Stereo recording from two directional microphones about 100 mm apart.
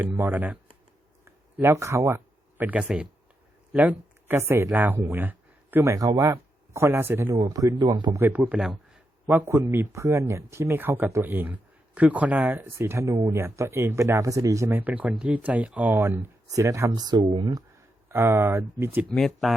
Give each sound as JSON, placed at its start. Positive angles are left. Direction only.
{"t": 0.0, "sound": "speech", "side_deg": -25}
{"t": 0.3, "sound": "speech", "side_deg": -15}
{"t": 1.2, "sound": "speech", "side_deg": -25}
{"t": 7.3, "sound": "speech", "side_deg": -35}
{"t": 8.1, "sound": "speech", "side_deg": -20}
{"t": 9.2, "sound": "speech", "side_deg": -25}
{"t": 14.7, "sound": "speech", "side_deg": -15}
{"t": 16.0, "sound": "speech", "side_deg": -25}
{"t": 16.9, "sound": "speech", "side_deg": -45}
{"t": 18.1, "sound": "speech", "side_deg": -25}
{"t": 19.1, "sound": "speech", "side_deg": 0}